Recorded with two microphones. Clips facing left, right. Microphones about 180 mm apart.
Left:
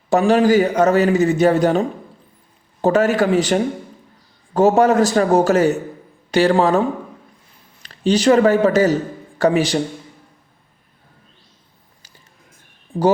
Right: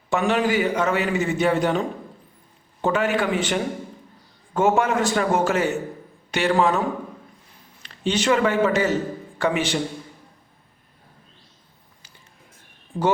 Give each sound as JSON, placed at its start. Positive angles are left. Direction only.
{"t": 0.1, "sound": "a man's voice", "side_deg": 40}
{"t": 2.8, "sound": "a man's voice", "side_deg": 40}
{"t": 12.9, "sound": "speech", "side_deg": 30}